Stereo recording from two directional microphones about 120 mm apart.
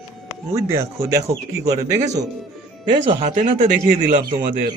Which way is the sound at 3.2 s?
90° right.